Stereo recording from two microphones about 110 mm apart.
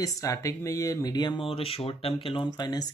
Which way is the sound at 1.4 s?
55° left (ahead or behind).